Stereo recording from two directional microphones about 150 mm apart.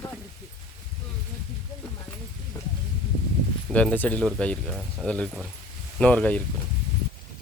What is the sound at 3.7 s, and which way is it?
Speech, 10° left (ahead or behind).